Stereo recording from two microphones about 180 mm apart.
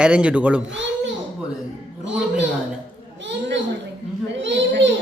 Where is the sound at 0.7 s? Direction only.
90° right.